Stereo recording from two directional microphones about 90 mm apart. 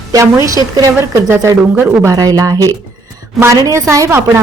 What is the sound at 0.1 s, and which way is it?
A woman's voice, 40° right (ahead or behind).